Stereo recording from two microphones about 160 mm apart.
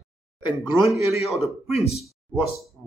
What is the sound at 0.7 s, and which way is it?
Speech, 10° right (ahead or behind).